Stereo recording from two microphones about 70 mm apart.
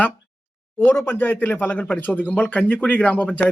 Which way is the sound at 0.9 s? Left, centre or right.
Left.